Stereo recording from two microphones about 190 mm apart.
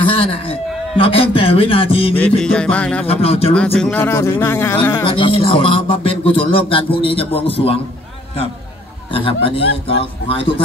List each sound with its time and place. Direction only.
0.9 s a man's voice: 30° left (ahead or behind)
2.1 s speech: 5° left (ahead or behind)
3.1 s a man's voice: 30° left (ahead or behind)
3.5 s speech: 5° left (ahead or behind)
5.0 s a man's voice: 25° left (ahead or behind)
9.1 s a man's voice: 30° left (ahead or behind)